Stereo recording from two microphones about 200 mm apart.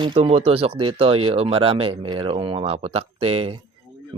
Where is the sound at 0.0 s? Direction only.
30° right (ahead or behind).